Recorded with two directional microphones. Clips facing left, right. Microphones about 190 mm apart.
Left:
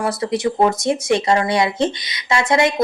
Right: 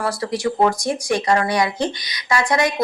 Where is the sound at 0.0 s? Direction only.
20° left (ahead or behind).